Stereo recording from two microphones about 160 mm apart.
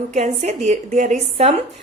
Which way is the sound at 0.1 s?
45° right (ahead or behind).